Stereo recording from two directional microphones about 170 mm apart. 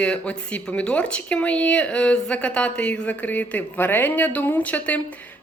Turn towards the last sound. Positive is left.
turn(degrees=10)  # may be behind; listen again after turning